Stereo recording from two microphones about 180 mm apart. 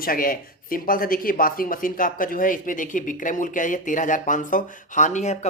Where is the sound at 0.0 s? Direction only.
50° left (ahead or behind).